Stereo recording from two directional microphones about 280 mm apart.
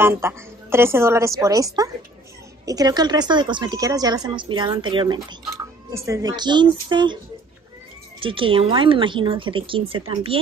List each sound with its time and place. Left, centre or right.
0.0 s a woman's voice: centre
8.2 s a woman's voice: centre